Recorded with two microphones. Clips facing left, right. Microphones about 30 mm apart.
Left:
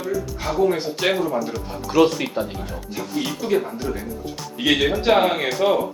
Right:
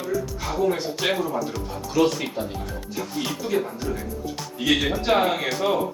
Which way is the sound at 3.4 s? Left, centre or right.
Centre.